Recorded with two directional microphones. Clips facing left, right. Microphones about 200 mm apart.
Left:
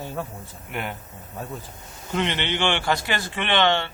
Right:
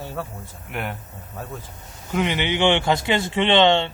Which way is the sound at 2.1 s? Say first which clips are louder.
Right 3 dB; 10° right (ahead or behind).